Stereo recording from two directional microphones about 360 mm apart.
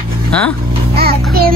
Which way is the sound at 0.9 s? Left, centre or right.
Right.